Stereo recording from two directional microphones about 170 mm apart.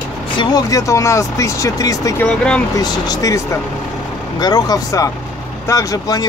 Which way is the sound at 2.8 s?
20° left (ahead or behind).